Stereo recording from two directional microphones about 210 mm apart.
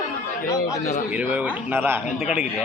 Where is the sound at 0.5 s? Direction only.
15° left (ahead or behind).